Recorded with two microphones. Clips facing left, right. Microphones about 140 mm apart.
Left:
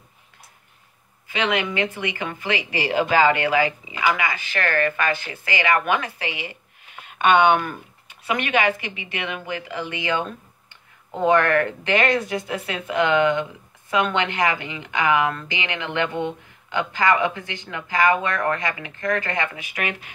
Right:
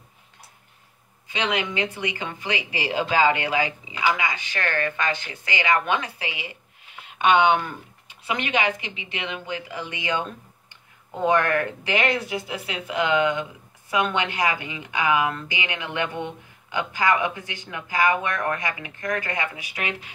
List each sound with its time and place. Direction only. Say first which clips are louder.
1.2 s speech: left 3 dB; 15° right (ahead or behind)
8.3 s a woman's voice: left 3 dB; 50° left (ahead or behind)
9.0 s speech: left 2 dB; 20° right (ahead or behind)
11.2 s speech: left 3 dB; 15° right (ahead or behind)
16.1 s speech: left 5 dB; 15° left (ahead or behind)
16.7 s speech: left 2 dB; 15° right (ahead or behind)